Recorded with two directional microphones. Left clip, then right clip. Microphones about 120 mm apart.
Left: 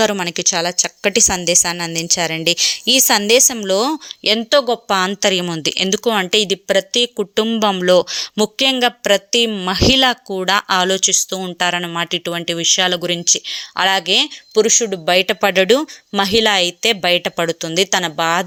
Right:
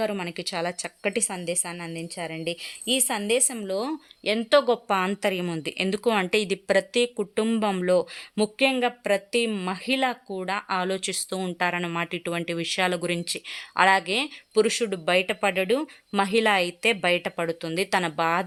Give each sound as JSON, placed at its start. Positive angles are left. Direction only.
{"t": 0.0, "sound": "a woman's voice", "side_deg": 45}
{"t": 0.6, "sound": "speech", "side_deg": 25}
{"t": 1.3, "sound": "a woman's voice", "side_deg": 50}
{"t": 4.4, "sound": "speech", "side_deg": 20}
{"t": 5.9, "sound": "a woman's voice", "side_deg": 30}
{"t": 9.7, "sound": "speech", "side_deg": 60}
{"t": 10.0, "sound": "a woman's voice", "side_deg": 50}
{"t": 10.8, "sound": "a woman's voice", "side_deg": 40}
{"t": 11.0, "sound": "speech", "side_deg": 15}
{"t": 11.6, "sound": "speech", "side_deg": 30}
{"t": 16.1, "sound": "speech", "side_deg": 30}
{"t": 17.3, "sound": "a woman's voice", "side_deg": 40}
{"t": 18.0, "sound": "speech", "side_deg": 25}